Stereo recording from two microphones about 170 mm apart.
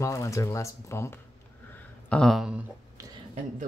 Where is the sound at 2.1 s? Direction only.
5° left (ahead or behind).